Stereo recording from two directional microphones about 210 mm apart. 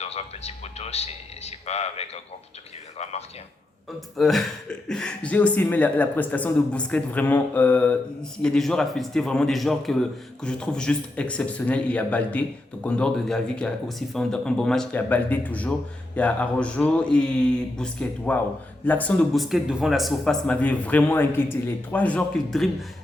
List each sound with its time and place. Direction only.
0.0 s a man's voice: 30° left (ahead or behind)
4.2 s speech: centre (ahead or behind)